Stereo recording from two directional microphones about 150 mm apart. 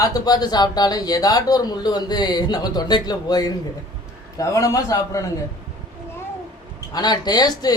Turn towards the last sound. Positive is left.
turn(degrees=25)  # may be behind; listen again after turning